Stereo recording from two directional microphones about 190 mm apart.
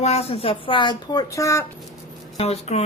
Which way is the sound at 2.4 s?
35° left (ahead or behind).